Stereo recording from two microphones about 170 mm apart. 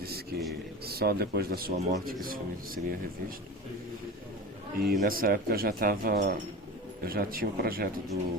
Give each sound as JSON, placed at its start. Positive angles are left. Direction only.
{"t": 0.0, "sound": "a sound", "side_deg": -65}
{"t": 0.9, "sound": "speech", "side_deg": -65}
{"t": 4.8, "sound": "speech", "side_deg": -60}